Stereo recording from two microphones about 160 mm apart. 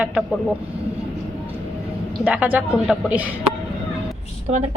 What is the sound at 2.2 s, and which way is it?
A woman's voice, 10° right (ahead or behind).